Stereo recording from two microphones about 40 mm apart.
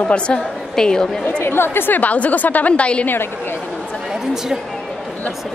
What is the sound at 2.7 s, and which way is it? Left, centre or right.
Speech, left.